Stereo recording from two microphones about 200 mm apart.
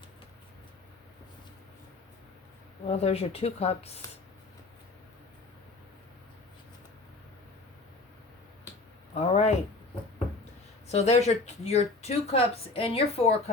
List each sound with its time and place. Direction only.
2.8 s speech: 30° left (ahead or behind)
9.1 s speech: 30° left (ahead or behind)
10.9 s speech: 35° left (ahead or behind)